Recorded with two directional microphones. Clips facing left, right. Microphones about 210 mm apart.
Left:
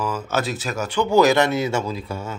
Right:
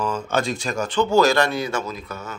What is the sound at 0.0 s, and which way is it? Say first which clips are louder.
Speech: right 1 dB; 5° left (ahead or behind).